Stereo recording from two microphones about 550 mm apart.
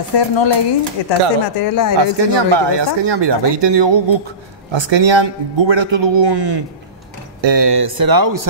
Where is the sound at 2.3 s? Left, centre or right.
Right.